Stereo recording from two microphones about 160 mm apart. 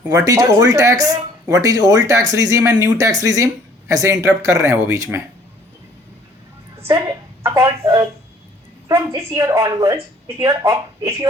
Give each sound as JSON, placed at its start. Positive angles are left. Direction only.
{"t": 0.1, "sound": "speech", "side_deg": -20}
{"t": 7.4, "sound": "a sound", "side_deg": -20}
{"t": 8.9, "sound": "speech", "side_deg": -20}